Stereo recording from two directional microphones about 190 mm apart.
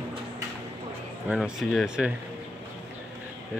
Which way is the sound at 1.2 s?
Centre (ahead or behind).